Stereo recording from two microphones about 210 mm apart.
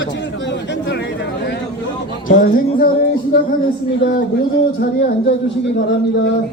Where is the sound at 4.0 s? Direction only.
60° left (ahead or behind).